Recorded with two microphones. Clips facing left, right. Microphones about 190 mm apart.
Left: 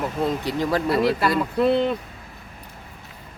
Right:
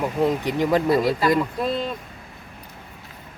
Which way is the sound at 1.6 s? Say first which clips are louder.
Left 6 dB; 70° left (ahead or behind).